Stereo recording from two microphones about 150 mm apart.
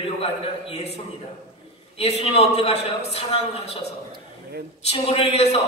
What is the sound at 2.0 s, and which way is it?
Speech, 45° left (ahead or behind).